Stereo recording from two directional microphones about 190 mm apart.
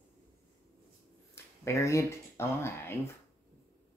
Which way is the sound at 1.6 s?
15° left (ahead or behind).